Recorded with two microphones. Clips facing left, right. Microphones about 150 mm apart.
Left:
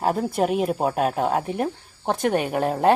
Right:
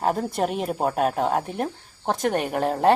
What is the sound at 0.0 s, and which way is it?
Speech, 5° left (ahead or behind).